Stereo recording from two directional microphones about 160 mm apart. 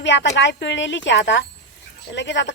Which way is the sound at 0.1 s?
90° left.